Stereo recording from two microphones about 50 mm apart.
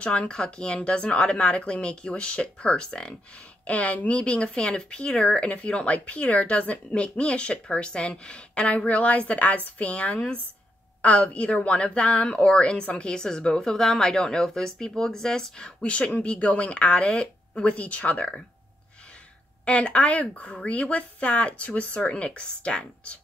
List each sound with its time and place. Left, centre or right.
0.0 s speech: left
3.6 s speech: left
19.6 s speech: left